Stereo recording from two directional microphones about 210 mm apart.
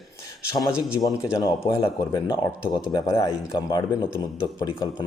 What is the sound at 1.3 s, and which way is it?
Speech, 15° left (ahead or behind).